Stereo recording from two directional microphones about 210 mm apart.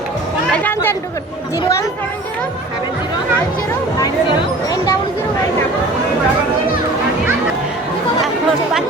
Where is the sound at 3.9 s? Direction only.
15° left (ahead or behind).